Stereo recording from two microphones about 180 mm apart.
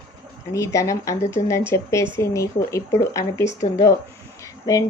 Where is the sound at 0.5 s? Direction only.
15° left (ahead or behind).